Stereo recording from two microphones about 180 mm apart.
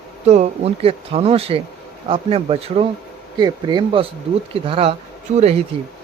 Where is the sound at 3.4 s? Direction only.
25° right (ahead or behind).